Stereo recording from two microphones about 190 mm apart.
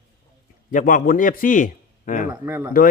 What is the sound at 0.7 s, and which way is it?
Speech, 45° left (ahead or behind).